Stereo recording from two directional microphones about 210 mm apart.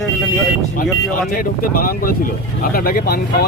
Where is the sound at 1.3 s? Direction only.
40° left (ahead or behind).